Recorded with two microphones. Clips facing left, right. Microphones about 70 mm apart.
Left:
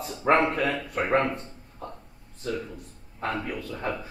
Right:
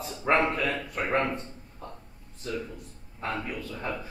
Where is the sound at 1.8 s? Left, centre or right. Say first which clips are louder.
Left 4 dB; left.